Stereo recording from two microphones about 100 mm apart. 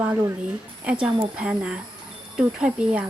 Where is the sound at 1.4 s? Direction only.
10° right (ahead or behind).